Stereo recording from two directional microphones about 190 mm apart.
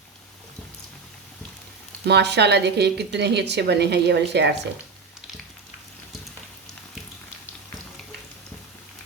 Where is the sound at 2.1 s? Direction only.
60° right (ahead or behind).